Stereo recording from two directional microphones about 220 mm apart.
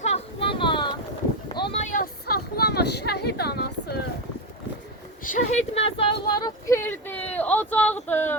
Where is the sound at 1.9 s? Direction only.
40° left (ahead or behind).